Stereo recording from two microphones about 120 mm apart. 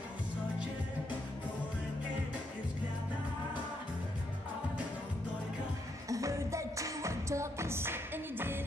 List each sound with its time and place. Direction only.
6.0 s music: 25° right (ahead or behind)